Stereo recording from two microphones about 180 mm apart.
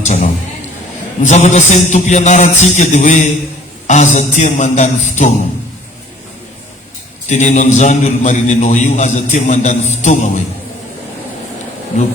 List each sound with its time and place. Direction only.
0.0 s a sound: 40° left (ahead or behind)
1.2 s a man's voice: 40° left (ahead or behind)
7.3 s a man's voice: 40° left (ahead or behind)